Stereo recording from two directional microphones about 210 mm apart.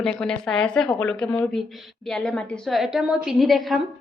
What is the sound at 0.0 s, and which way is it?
A woman's voice, 5° left (ahead or behind).